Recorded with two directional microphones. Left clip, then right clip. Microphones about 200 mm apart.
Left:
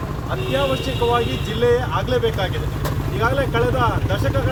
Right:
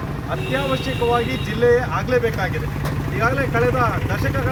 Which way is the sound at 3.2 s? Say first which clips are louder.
Even; 20° left (ahead or behind).